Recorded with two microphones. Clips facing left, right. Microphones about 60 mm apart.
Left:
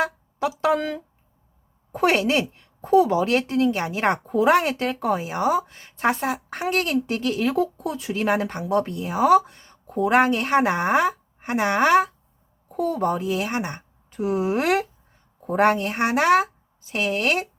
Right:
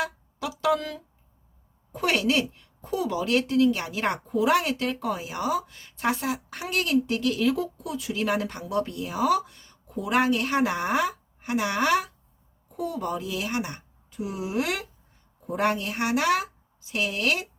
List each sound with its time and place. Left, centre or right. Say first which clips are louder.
0.0 s a sound: left 6 dB; left
1.9 s a woman's voice: left 4 dB; left
9.8 s a woman's voice: left 5 dB; left
12.6 s a woman's voice: left 7 dB; left
14.1 s a woman's voice: left 8 dB; left